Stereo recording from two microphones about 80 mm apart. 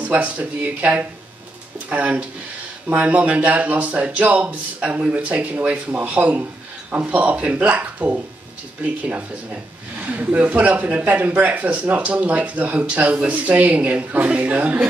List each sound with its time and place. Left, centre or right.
0.0 s speech: centre